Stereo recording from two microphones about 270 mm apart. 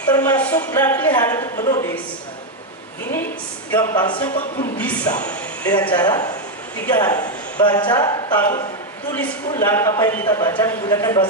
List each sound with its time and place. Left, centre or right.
0.0 s a man's voice: centre
3.7 s a man's voice: centre
4.7 s a man's voice: centre